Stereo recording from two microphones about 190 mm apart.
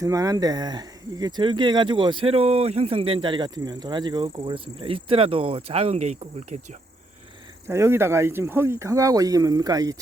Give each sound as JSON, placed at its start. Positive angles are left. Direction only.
{"t": 0.0, "sound": "speech", "side_deg": -15}
{"t": 7.7, "sound": "speech", "side_deg": -15}